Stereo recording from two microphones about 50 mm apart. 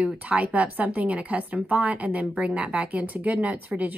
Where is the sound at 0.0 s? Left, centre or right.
Right.